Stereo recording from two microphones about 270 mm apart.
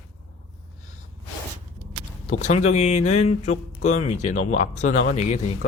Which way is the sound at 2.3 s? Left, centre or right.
Left.